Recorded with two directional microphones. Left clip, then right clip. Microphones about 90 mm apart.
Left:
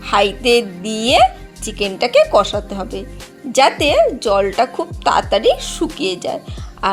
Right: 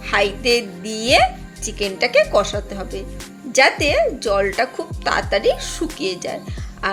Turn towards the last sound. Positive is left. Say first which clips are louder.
# left 5 dB
turn(degrees=45)  # may be behind; listen again after turning